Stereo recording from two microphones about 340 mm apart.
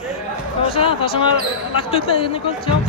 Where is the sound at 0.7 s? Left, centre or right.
Centre.